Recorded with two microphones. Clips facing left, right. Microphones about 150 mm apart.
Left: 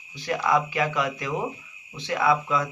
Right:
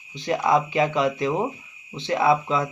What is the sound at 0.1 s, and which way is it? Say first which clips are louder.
Speech: right 3 dB; 25° right (ahead or behind).